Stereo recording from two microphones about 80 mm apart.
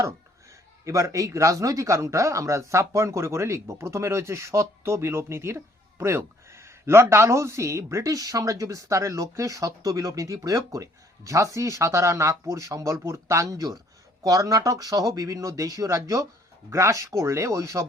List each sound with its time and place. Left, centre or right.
0.9 s speech: right